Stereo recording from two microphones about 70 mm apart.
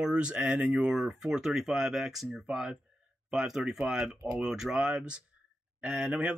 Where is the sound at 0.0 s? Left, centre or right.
Centre.